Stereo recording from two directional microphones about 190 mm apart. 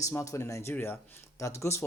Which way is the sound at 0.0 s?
15° left (ahead or behind).